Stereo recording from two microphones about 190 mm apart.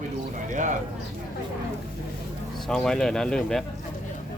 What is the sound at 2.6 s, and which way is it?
A man's voice, 5° left (ahead or behind).